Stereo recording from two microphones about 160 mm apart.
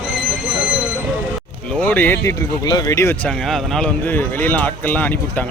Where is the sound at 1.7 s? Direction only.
10° left (ahead or behind).